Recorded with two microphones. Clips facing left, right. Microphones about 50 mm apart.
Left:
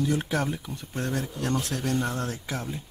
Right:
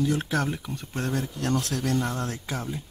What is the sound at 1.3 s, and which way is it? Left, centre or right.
Speech, centre.